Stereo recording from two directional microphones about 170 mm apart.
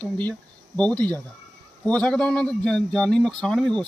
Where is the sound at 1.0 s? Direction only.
20° right (ahead or behind).